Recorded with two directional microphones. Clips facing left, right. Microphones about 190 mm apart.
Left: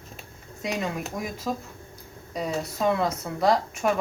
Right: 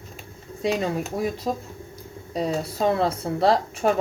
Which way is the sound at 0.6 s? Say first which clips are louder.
Right 5 dB; 30° right (ahead or behind).